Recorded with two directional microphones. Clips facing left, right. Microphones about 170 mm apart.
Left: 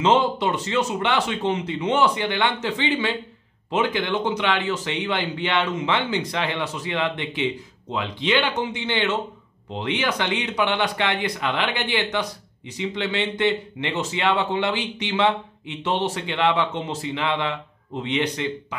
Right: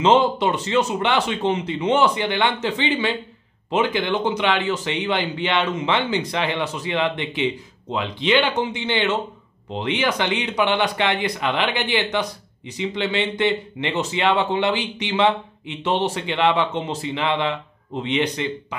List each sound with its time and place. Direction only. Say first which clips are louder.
0.0 s speech: right 3 dB; 20° right (ahead or behind)